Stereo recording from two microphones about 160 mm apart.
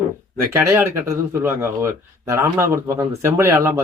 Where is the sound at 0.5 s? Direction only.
15° right (ahead or behind).